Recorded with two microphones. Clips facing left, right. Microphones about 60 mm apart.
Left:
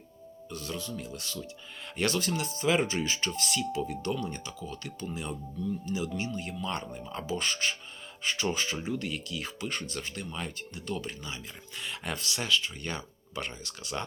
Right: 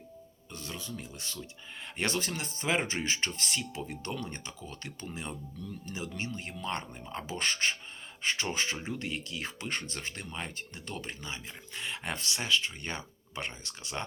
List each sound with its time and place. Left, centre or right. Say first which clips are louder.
0.5 s speech: left 4 dB; right